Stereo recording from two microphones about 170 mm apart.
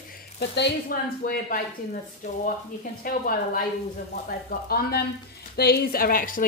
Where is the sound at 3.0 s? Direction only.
55° left (ahead or behind).